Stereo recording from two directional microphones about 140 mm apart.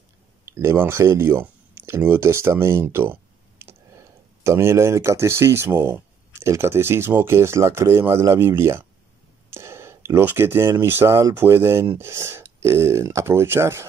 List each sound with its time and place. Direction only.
0.5 s speech: 20° right (ahead or behind)